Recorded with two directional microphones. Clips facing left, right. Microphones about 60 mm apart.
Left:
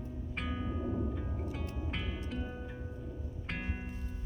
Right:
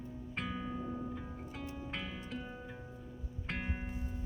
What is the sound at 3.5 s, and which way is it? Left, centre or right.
Music, centre.